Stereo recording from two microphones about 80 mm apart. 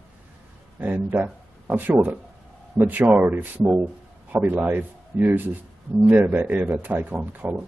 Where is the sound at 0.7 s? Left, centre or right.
Right.